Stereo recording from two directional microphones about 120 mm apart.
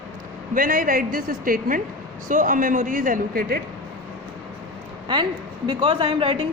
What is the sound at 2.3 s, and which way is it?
Speech, 90° right.